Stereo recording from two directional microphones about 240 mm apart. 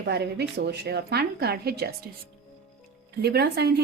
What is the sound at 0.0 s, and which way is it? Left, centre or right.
A woman's voice, right.